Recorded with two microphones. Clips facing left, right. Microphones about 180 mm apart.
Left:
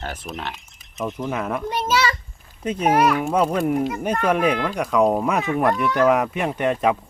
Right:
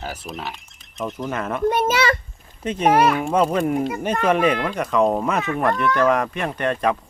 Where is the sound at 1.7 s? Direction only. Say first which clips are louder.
Even; 55° right (ahead or behind).